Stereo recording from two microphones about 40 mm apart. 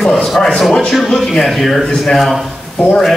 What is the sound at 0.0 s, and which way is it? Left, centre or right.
Speech, centre.